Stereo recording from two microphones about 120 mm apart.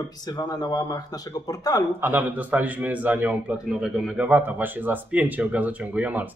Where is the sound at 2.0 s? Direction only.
15° right (ahead or behind).